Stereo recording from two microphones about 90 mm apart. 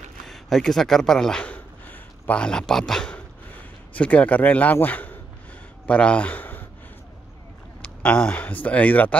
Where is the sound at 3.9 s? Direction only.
15° left (ahead or behind).